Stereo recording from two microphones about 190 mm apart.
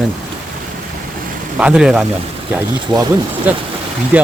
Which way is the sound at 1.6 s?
5° right (ahead or behind).